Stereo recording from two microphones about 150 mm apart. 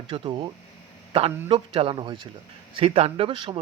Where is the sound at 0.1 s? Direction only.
35° right (ahead or behind).